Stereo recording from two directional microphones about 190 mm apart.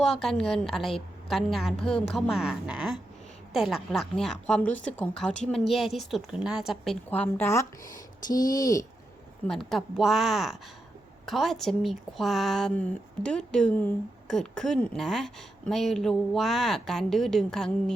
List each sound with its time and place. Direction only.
0.0 s speech: centre (ahead or behind); by 8.9 s 20° left (ahead or behind)
9.5 s speech: centre (ahead or behind)